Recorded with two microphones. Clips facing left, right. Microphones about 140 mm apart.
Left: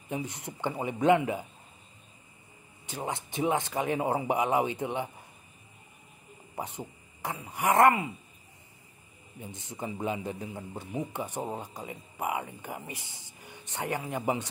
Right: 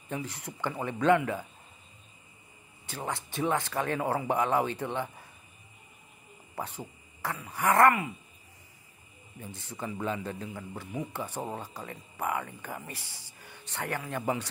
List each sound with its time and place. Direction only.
0.1 s speech: 20° left (ahead or behind)
2.9 s a man's voice: 20° left (ahead or behind)
6.5 s speech: 20° left (ahead or behind)
9.4 s a man's voice: 20° left (ahead or behind)